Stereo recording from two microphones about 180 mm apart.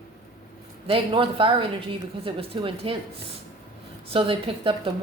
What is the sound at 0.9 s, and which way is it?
Speech, 30° right (ahead or behind).